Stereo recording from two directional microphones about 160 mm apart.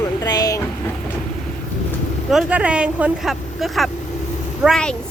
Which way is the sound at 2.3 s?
5° right (ahead or behind).